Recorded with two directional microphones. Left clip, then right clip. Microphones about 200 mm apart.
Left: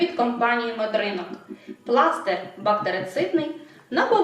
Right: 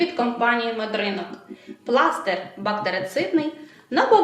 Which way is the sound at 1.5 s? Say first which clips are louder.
Left 1 dB; 5° left (ahead or behind).